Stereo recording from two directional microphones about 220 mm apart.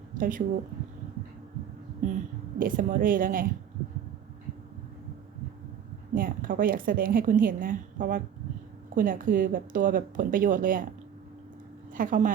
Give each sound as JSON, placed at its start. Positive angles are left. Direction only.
{"t": 0.2, "sound": "a woman's voice", "side_deg": -35}
{"t": 2.0, "sound": "a sound", "side_deg": -35}
{"t": 2.6, "sound": "a woman's voice", "side_deg": -40}
{"t": 6.1, "sound": "a woman's voice", "side_deg": -40}
{"t": 11.9, "sound": "a woman's voice", "side_deg": -35}